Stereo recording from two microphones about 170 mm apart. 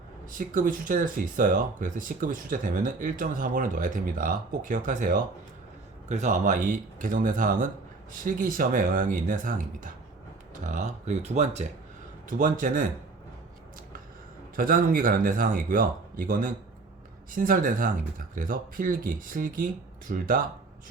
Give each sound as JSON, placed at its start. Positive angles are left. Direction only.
{"t": 0.3, "sound": "speech", "side_deg": -50}
{"t": 14.5, "sound": "speech", "side_deg": -55}